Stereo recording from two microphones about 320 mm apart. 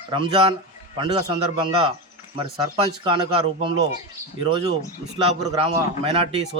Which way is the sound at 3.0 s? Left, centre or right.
Centre.